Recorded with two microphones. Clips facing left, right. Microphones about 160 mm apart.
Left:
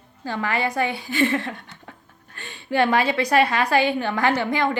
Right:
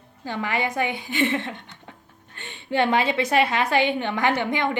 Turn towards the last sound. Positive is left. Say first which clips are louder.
# left 2 dB
turn(degrees=-20)  # may be behind; listen again after turning